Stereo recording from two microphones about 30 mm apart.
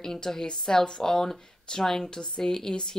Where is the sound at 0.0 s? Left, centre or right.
Centre.